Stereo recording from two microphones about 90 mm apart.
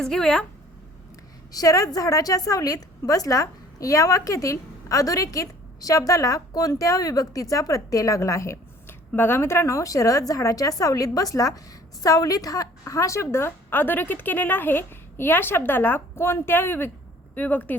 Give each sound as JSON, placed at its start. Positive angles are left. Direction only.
{"t": 0.0, "sound": "speech", "side_deg": 5}
{"t": 1.5, "sound": "a woman's voice", "side_deg": 40}